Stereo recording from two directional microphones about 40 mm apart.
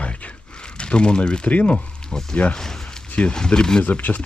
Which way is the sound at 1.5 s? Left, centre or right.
Left.